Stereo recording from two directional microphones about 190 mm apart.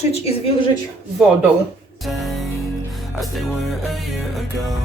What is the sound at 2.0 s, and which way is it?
Music, centre (ahead or behind).